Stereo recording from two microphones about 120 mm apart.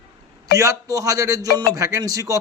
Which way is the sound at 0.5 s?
25° right (ahead or behind).